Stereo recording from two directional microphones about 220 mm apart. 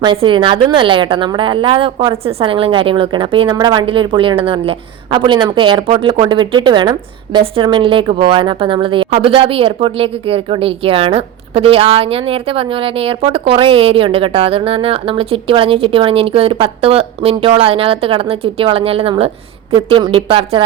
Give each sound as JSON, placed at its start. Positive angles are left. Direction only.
{"t": 0.0, "sound": "a woman's voice", "side_deg": -20}